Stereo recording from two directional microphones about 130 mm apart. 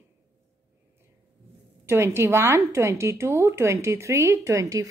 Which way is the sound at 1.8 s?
20° right (ahead or behind).